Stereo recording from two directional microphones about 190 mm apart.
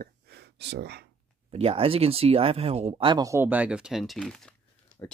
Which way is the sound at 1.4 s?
30° right (ahead or behind).